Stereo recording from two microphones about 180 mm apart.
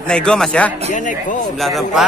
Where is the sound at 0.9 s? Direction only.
45° left (ahead or behind).